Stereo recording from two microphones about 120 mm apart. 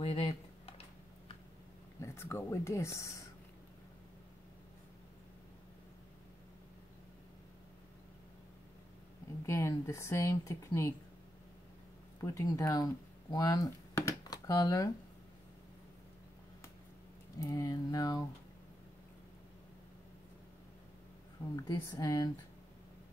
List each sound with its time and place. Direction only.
0.0 s a sound: 55° left (ahead or behind)
2.0 s speech: 20° left (ahead or behind)
9.5 s speech: 25° left (ahead or behind)
12.2 s speech: 25° left (ahead or behind)
17.4 s speech: 25° left (ahead or behind)
21.6 s speech: 30° left (ahead or behind)